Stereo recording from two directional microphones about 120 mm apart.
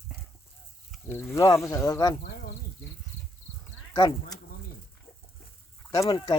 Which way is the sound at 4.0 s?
35° left (ahead or behind).